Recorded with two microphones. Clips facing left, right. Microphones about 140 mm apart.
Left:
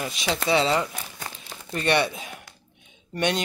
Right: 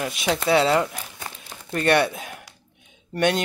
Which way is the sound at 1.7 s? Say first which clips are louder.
Right 3 dB; 50° right (ahead or behind).